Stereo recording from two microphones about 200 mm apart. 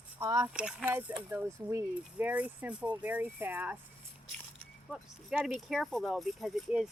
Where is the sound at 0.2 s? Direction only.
15° right (ahead or behind).